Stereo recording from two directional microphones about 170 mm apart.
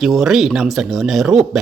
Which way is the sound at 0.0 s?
Centre (ahead or behind).